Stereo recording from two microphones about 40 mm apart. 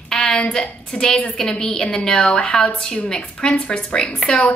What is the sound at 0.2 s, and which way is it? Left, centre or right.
A woman's voice, left.